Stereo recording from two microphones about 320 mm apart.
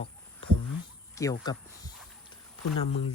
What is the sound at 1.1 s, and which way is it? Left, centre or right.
Speech, centre.